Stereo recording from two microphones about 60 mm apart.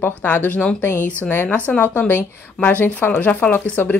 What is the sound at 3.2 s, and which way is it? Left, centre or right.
Speech, left.